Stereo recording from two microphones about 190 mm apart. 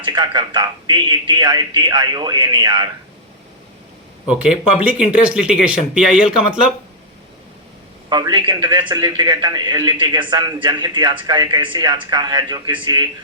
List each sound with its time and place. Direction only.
0.0 s a man's voice: 25° right (ahead or behind)
4.3 s speech: 5° right (ahead or behind)
8.1 s a man's voice: 25° right (ahead or behind)